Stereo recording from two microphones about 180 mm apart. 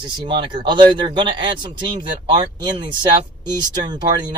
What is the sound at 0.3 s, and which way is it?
Speech, 25° right (ahead or behind).